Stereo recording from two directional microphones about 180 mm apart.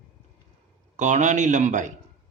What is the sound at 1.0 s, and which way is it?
Speech, 40° right (ahead or behind).